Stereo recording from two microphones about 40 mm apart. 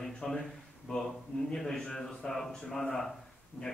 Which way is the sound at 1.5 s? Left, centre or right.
Centre.